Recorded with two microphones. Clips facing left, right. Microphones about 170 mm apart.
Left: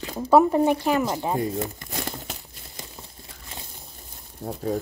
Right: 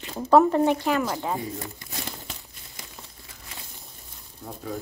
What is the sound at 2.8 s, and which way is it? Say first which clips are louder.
Crumpling: left 3 dB; 30° left (ahead or behind).